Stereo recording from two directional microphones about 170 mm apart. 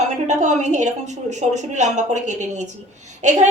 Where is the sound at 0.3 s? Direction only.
45° right (ahead or behind).